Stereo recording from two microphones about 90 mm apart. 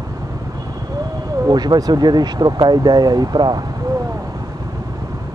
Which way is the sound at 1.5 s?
50° right (ahead or behind).